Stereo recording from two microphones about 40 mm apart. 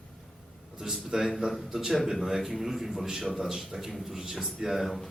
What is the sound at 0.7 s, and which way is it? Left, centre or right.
A man's voice, centre.